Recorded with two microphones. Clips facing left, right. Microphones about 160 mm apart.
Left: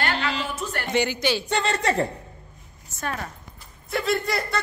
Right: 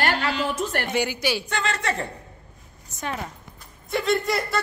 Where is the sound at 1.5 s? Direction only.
30° left (ahead or behind).